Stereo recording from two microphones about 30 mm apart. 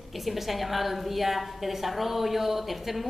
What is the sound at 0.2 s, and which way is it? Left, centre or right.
A woman's voice, centre.